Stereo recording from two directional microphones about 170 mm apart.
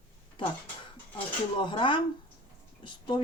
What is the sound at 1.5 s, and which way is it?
Speech, 30° left (ahead or behind).